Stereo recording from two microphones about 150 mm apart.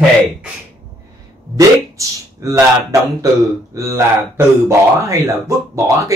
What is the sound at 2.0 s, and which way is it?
Speech, 20° right (ahead or behind).